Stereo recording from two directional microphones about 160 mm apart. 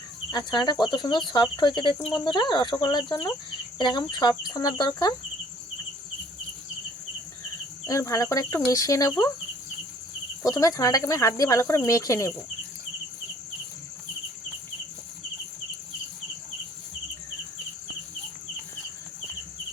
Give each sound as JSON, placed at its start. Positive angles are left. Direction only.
{"t": 0.3, "sound": "speech", "side_deg": 25}
{"t": 7.9, "sound": "speech", "side_deg": 20}
{"t": 10.5, "sound": "speech", "side_deg": 20}